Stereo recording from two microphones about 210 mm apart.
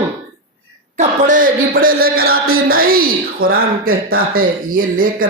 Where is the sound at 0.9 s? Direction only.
35° right (ahead or behind).